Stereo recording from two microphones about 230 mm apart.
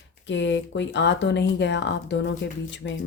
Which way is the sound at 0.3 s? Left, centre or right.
Left.